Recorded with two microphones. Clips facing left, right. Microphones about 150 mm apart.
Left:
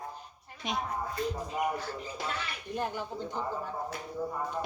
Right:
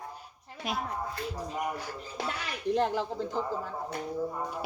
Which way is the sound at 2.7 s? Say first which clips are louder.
Right 5 dB; 90° right.